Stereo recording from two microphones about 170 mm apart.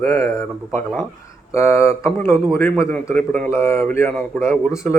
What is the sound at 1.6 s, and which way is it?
Speech, 15° left (ahead or behind).